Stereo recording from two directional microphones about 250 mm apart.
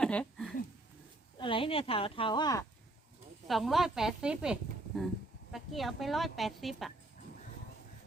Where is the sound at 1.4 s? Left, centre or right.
Left.